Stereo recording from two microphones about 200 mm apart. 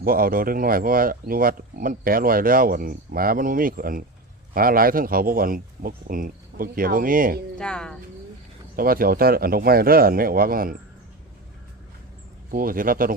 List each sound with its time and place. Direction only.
0.0 s speech: 45° right (ahead or behind)
7.6 s speech: 5° left (ahead or behind)
8.7 s speech: 45° right (ahead or behind)
12.5 s speech: 45° right (ahead or behind)